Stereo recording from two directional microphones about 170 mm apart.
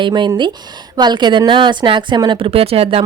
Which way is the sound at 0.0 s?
25° right (ahead or behind).